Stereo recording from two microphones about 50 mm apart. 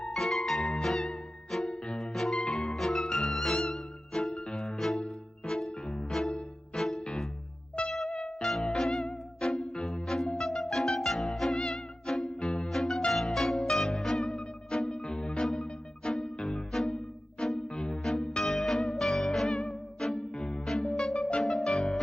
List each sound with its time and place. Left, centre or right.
0.0 s music: centre
2.0 s music: centre
12.6 s music: centre